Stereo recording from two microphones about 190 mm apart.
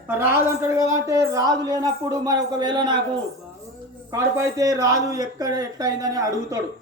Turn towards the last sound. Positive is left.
turn(degrees=-20)  # may be behind; listen again after turning